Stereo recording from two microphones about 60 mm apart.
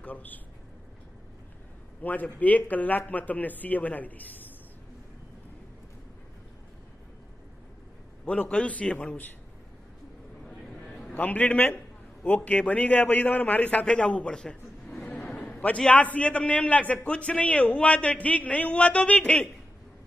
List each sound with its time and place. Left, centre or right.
0.0 s a man's voice: left
2.0 s a man's voice: left
8.3 s a man's voice: centre
10.9 s a sound: centre
11.1 s a man's voice: left
15.9 s a man's voice: left